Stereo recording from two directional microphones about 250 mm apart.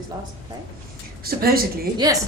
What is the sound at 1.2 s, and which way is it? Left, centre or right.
Speech, right.